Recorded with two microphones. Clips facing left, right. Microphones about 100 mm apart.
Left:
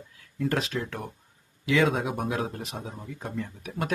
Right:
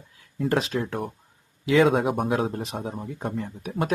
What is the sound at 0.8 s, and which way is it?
Speech, 45° right (ahead or behind).